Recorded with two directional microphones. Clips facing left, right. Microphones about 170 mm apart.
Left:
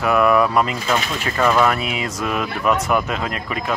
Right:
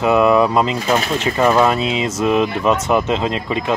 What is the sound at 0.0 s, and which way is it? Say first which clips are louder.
Speech: right 3 dB; 20° right (ahead or behind).